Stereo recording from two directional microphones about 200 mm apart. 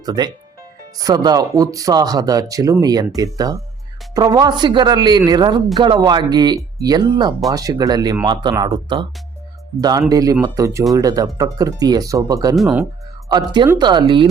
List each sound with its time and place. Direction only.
0.0 s speech: 20° right (ahead or behind)
10.1 s speech: 15° right (ahead or behind)